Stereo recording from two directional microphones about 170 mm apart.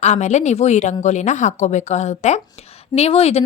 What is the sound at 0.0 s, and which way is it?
A woman's voice, 45° left (ahead or behind).